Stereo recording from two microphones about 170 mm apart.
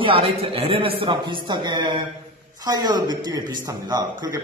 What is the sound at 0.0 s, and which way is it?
A man's voice, 35° right (ahead or behind).